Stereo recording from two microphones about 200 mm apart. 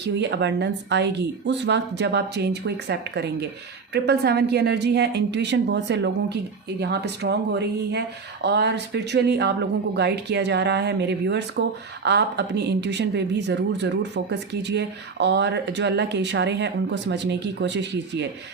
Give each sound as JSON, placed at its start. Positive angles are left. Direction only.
{"t": 0.0, "sound": "speech", "side_deg": -60}